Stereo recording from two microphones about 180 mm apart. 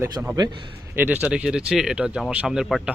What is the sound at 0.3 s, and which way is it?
Speech, 20° right (ahead or behind).